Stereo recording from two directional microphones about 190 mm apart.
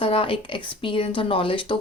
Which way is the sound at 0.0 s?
30° left (ahead or behind).